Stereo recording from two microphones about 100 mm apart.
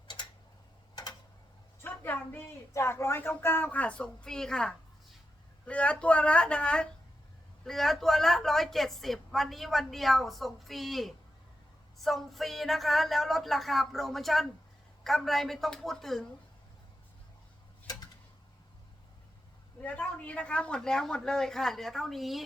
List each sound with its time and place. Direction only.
1.8 s a sound: 20° left (ahead or behind)
2.7 s a woman's voice: 25° left (ahead or behind); by 16.2 s 5° left (ahead or behind)
19.8 s speech: 15° left (ahead or behind)